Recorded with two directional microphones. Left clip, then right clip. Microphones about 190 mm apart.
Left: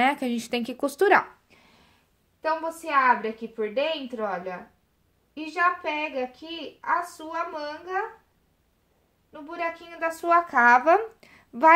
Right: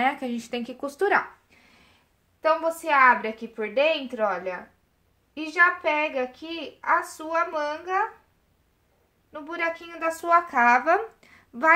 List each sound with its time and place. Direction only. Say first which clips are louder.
0.0 s speech: left 2 dB; 45° left (ahead or behind)
2.8 s speech: right 2 dB; 10° left (ahead or behind)
9.3 s a child's voice: right 3 dB; 10° left (ahead or behind); by 11.7 s 35° left (ahead or behind)